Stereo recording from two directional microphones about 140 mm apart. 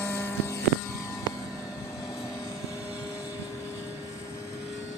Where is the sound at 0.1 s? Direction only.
15° left (ahead or behind).